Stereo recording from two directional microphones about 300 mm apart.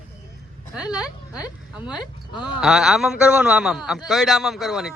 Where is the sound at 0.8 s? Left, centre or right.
Centre.